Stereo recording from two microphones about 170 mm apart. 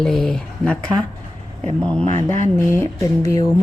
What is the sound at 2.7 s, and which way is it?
Speech, 15° left (ahead or behind).